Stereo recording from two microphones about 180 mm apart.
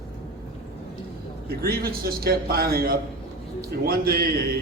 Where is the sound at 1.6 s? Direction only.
60° right (ahead or behind).